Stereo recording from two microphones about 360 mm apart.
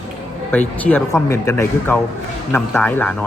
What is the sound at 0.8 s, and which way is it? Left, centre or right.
Speech, centre.